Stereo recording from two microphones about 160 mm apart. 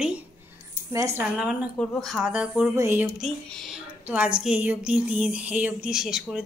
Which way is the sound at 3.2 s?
Centre (ahead or behind).